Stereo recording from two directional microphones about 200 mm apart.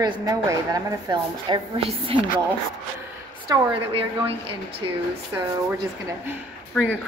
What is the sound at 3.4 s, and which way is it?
A woman's voice, 25° right (ahead or behind).